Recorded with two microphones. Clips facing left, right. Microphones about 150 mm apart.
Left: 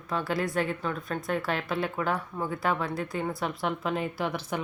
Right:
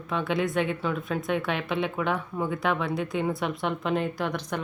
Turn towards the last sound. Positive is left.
turn(degrees=5)  # may be behind; listen again after turning